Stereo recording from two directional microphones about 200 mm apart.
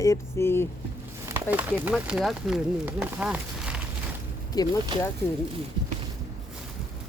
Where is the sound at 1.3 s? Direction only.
10° right (ahead or behind).